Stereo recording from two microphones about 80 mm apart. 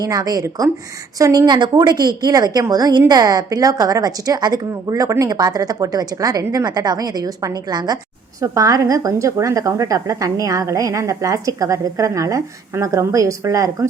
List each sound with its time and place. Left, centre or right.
0.0 s a woman's voice: right
1.5 s a woman's voice: right
8.4 s a woman's voice: right